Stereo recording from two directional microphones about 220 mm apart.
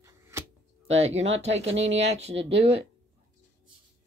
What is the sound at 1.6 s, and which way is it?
Speech, 55° right (ahead or behind).